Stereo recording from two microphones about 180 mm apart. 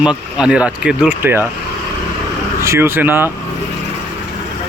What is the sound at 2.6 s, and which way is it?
Speech, 15° right (ahead or behind).